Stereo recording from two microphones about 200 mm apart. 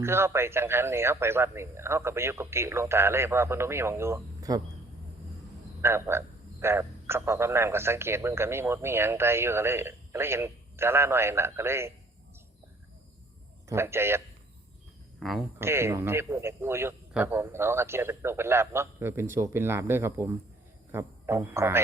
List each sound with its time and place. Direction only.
0.0 s a man's voice: 10° right (ahead or behind)
5.8 s a man's voice: 10° right (ahead or behind)
13.7 s a man's voice: 10° right (ahead or behind)
15.2 s speech: centre (ahead or behind)
15.5 s a man's voice: 10° right (ahead or behind)